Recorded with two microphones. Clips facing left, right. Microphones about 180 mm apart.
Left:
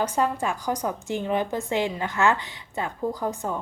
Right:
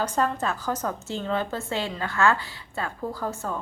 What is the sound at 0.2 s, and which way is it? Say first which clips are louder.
A woman's voice: left 1 dB; 10° left (ahead or behind).